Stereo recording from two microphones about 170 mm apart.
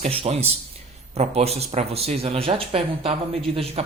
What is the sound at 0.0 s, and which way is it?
Speech, 35° right (ahead or behind).